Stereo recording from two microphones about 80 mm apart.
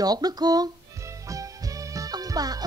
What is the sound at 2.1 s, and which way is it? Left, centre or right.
Music, right.